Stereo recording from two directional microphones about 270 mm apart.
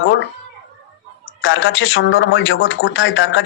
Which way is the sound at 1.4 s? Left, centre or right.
Left.